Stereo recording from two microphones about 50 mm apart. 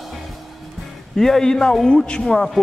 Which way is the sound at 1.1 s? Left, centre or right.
Centre.